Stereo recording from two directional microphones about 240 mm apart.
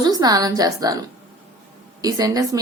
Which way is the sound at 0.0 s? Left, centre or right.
Centre.